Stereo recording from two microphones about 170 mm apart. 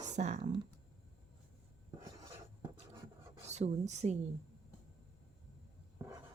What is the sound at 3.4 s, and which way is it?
Speech, 40° right (ahead or behind).